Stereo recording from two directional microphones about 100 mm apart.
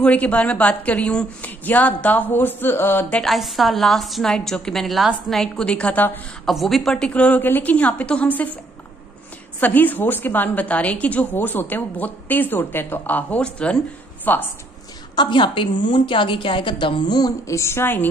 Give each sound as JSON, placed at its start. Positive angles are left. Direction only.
{"t": 0.0, "sound": "a woman's voice", "side_deg": 15}
{"t": 3.2, "sound": "a woman's voice", "side_deg": 0}
{"t": 6.4, "sound": "a woman's voice", "side_deg": 0}
{"t": 9.6, "sound": "a woman's voice", "side_deg": 20}
{"t": 15.1, "sound": "a woman's voice", "side_deg": 55}
{"t": 17.5, "sound": "a woman's voice", "side_deg": 30}